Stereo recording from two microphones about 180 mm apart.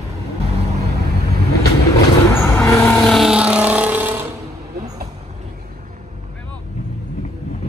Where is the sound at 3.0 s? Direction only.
Centre (ahead or behind).